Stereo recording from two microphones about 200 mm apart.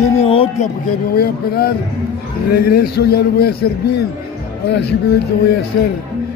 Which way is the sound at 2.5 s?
50° left (ahead or behind).